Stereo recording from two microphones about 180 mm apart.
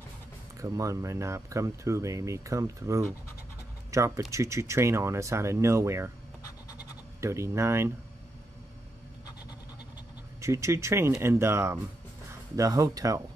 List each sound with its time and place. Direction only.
0.6 s speech: 20° right (ahead or behind)
6.8 s bleat: 15° right (ahead or behind)
10.4 s speech: 15° right (ahead or behind)